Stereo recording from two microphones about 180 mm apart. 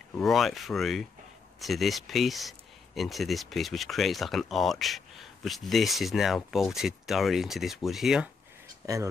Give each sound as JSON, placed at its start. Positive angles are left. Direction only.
{"t": 0.1, "sound": "speech", "side_deg": 0}
{"t": 8.8, "sound": "speech", "side_deg": -15}